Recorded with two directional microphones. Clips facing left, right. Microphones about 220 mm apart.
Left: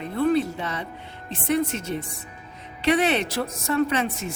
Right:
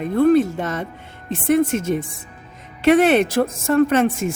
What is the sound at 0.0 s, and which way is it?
Speech, 50° right (ahead or behind).